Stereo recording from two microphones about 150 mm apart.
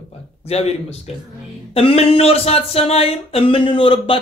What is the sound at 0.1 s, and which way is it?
Speech, 45° left (ahead or behind).